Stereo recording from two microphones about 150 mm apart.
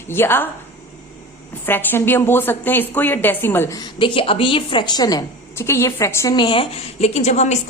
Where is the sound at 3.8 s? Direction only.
35° left (ahead or behind).